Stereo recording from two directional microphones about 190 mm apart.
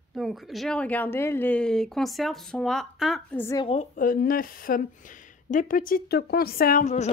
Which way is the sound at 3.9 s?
45° left (ahead or behind).